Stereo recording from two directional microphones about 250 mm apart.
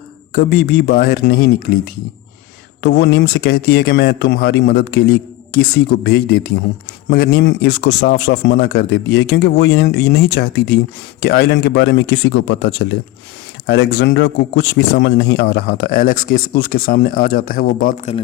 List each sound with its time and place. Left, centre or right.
0.3 s speech: left